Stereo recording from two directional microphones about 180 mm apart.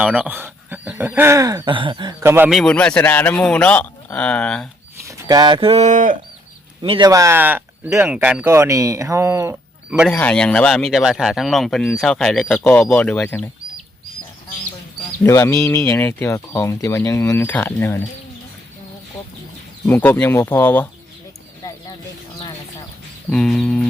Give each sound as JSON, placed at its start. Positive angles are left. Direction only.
{"t": 0.0, "sound": "speech", "side_deg": -5}
{"t": 2.2, "sound": "speech", "side_deg": -15}
{"t": 2.5, "sound": "speech", "side_deg": 0}
{"t": 5.0, "sound": "speech", "side_deg": -20}
{"t": 6.8, "sound": "speech", "side_deg": -30}
{"t": 7.1, "sound": "speech", "side_deg": -15}
{"t": 10.1, "sound": "speech", "side_deg": 5}
{"t": 15.2, "sound": "speech", "side_deg": 15}
{"t": 19.8, "sound": "speech", "side_deg": 10}
{"t": 21.6, "sound": "a sound", "side_deg": 20}
{"t": 23.3, "sound": "speech", "side_deg": 5}